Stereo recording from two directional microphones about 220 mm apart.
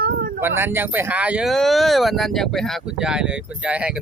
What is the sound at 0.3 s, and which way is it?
Speech, 10° right (ahead or behind).